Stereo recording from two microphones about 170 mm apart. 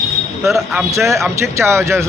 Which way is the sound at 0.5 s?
15° right (ahead or behind).